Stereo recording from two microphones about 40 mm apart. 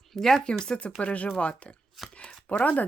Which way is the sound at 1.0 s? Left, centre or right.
Left.